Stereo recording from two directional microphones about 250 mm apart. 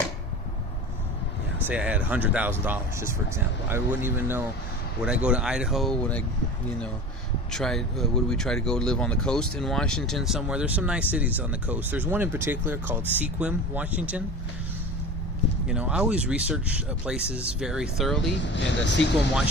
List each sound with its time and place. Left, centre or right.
1.6 s speech: centre
7.5 s speech: centre
15.6 s speech: centre
18.3 s speech: left